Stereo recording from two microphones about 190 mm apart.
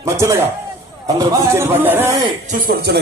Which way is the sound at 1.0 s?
20° right (ahead or behind).